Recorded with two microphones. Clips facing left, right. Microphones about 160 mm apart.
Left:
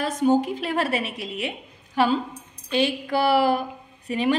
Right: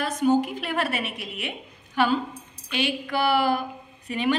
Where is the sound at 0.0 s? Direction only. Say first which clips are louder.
Left 1 dB; 30° left (ahead or behind).